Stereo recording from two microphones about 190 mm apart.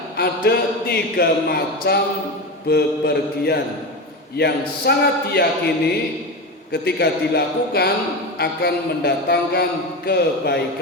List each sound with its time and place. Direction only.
0.2 s speech: 55° left (ahead or behind)